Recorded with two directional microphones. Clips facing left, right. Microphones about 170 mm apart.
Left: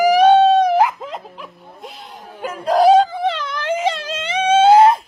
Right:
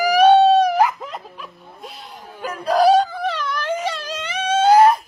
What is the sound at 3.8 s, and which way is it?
Wail, 25° left (ahead or behind).